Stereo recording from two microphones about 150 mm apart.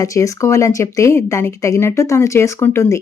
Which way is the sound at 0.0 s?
20° left (ahead or behind).